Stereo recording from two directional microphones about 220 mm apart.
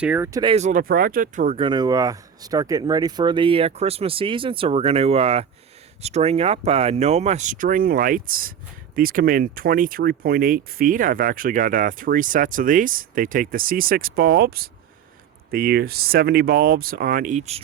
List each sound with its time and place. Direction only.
0.0 s speech: 10° right (ahead or behind)
0.5 s speech: 35° right (ahead or behind)